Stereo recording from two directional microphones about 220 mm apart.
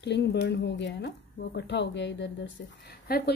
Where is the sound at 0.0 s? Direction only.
50° left (ahead or behind).